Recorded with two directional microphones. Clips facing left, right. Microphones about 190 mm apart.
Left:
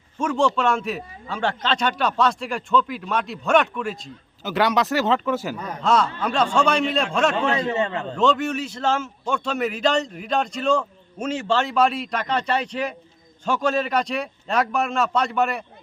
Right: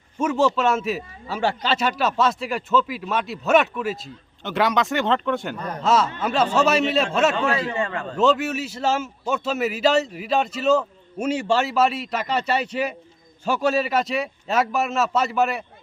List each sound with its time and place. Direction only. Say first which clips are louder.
0.2 s speech: right 1 dB; 5° right (ahead or behind)
7.5 s a man's voice: left 2 dB; 20° left (ahead or behind)
8.1 s speech: right 2 dB; 5° right (ahead or behind)